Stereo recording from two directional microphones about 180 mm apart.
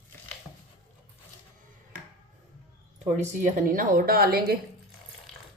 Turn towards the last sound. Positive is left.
turn(degrees=-55)  # may be behind; listen again after turning